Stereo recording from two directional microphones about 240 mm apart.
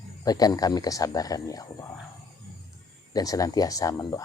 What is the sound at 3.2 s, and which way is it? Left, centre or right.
Speech, centre.